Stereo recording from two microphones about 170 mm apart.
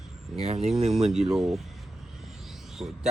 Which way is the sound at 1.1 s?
Centre (ahead or behind).